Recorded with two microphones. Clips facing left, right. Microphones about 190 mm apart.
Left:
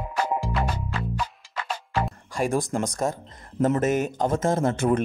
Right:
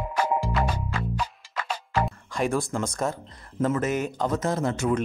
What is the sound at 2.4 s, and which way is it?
Speech, 15° left (ahead or behind).